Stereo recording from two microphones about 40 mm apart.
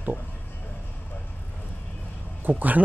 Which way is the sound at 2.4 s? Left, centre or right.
Right.